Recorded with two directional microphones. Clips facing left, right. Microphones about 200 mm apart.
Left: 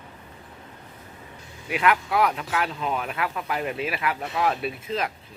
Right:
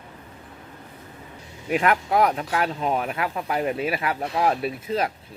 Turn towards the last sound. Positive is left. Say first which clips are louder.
# right 3 dB
turn(degrees=-35)  # may be behind; listen again after turning